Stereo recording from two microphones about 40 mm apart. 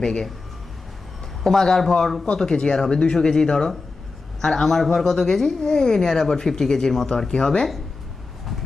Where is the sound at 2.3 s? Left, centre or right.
Centre.